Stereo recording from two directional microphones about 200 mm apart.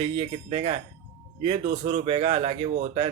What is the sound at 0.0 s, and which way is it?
A man's voice, 30° right (ahead or behind).